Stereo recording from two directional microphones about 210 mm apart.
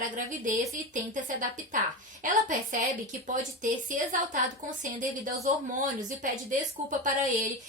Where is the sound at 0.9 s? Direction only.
40° right (ahead or behind).